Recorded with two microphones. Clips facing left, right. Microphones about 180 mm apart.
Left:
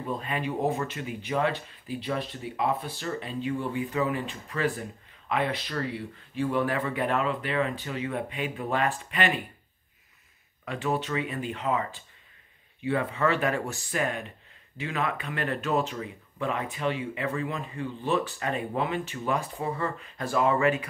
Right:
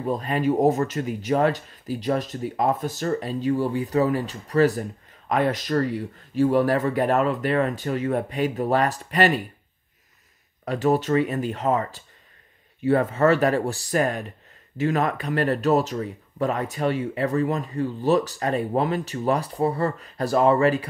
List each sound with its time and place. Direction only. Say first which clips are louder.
0.0 s speech: right 8 dB; 40° right (ahead or behind)
10.6 s speech: right 8 dB; 40° right (ahead or behind)